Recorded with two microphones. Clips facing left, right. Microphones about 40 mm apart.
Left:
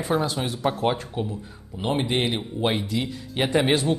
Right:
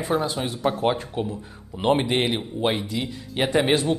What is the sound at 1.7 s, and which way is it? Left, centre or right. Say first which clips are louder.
Speech: right 5 dB; right.